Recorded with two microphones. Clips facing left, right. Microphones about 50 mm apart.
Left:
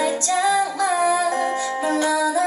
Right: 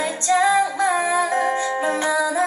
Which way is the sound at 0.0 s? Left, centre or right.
Right.